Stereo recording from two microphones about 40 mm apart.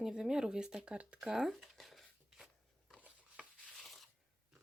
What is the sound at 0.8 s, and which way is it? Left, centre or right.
Speech, right.